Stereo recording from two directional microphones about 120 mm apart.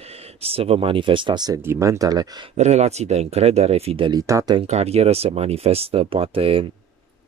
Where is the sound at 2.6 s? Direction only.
65° right (ahead or behind).